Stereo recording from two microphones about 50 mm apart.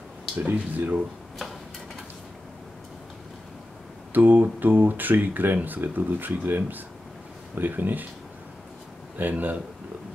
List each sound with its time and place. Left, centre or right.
0.4 s speech: right
4.1 s speech: right
9.3 s speech: right